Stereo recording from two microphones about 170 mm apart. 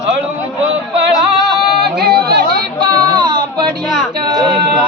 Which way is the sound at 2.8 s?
25° right (ahead or behind).